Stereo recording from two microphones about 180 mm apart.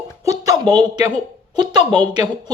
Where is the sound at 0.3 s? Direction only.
20° right (ahead or behind).